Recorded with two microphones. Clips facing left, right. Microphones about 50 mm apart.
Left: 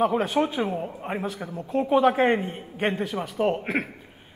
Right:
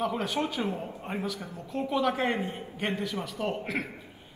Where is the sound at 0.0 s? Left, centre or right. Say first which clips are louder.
Left 7 dB; left.